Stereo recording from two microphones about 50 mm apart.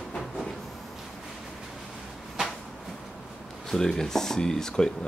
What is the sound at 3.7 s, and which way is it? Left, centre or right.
Speech, centre.